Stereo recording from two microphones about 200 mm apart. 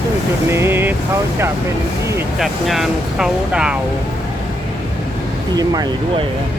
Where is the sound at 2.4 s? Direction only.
Centre (ahead or behind).